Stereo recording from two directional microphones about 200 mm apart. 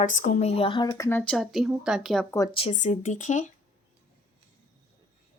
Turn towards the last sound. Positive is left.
turn(degrees=40)  # may be behind; listen again after turning